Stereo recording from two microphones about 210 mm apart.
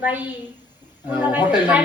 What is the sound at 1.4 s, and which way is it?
Speech, 10° right (ahead or behind).